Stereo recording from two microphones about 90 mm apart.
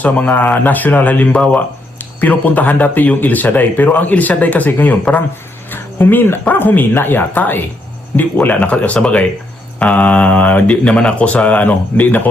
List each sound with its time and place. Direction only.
0.0 s speech: 15° left (ahead or behind)